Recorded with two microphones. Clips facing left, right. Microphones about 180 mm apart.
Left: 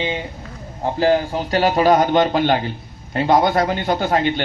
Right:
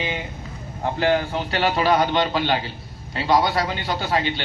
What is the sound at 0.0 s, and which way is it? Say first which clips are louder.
A man's voice: left 4 dB; 25° left (ahead or behind).